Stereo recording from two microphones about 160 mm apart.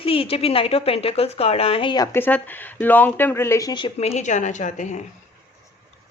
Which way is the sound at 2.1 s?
10° left (ahead or behind).